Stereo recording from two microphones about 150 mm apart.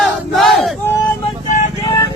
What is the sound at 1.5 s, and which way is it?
Vehicle, 55° left (ahead or behind).